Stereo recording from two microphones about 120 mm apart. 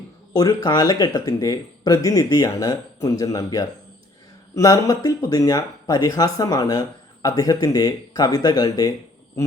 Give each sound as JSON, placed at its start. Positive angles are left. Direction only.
{"t": 0.3, "sound": "speech", "side_deg": 30}